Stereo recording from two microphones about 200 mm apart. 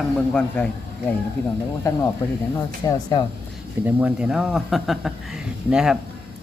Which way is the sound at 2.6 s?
20° left (ahead or behind).